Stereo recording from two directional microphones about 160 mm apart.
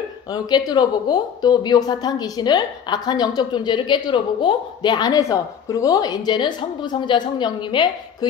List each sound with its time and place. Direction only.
0.3 s a woman's voice: 25° left (ahead or behind)